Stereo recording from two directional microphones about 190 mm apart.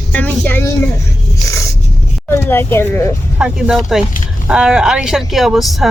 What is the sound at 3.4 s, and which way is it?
Speech, centre (ahead or behind).